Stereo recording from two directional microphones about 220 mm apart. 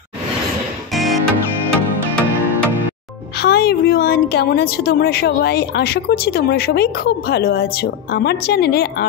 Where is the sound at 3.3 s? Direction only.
45° left (ahead or behind).